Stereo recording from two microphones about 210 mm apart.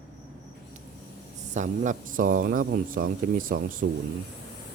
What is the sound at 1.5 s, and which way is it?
Speech, 35° right (ahead or behind).